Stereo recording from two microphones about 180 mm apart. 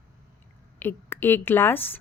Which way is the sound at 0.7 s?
10° left (ahead or behind).